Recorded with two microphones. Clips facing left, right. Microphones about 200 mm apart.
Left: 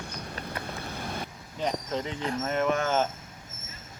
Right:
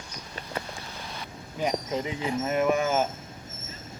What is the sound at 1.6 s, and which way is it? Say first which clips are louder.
Speech: right 2 dB; 5° right (ahead or behind).